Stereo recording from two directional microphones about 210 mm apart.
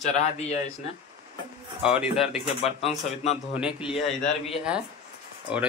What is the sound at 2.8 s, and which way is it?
Speech, 30° left (ahead or behind).